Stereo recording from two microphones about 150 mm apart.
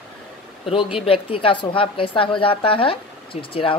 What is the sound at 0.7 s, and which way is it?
A woman's voice, 35° left (ahead or behind).